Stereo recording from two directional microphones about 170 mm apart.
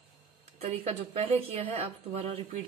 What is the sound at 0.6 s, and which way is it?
A woman's voice, 40° right (ahead or behind).